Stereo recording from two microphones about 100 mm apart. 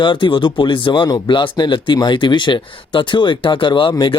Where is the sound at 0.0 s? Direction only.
55° left (ahead or behind).